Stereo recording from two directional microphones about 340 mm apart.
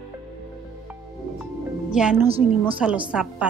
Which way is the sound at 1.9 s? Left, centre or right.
Centre.